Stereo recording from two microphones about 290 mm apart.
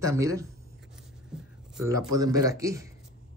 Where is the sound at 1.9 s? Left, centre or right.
Centre.